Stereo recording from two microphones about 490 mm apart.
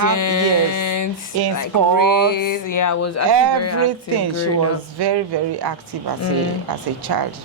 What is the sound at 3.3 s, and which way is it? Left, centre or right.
Speech, right.